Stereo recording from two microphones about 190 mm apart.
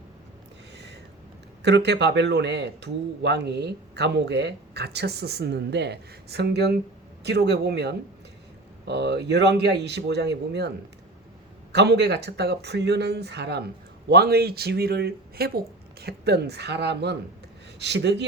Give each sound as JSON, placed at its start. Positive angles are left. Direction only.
{"t": 1.6, "sound": "speech", "side_deg": -65}
{"t": 11.7, "sound": "speech", "side_deg": -60}